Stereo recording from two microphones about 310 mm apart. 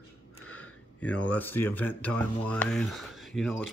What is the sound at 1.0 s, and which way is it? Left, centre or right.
Speech, centre.